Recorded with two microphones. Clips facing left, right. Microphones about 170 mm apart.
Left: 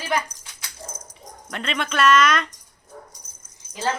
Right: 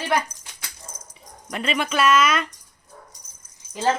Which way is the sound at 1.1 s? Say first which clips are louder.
Right 6 dB; 5° right (ahead or behind).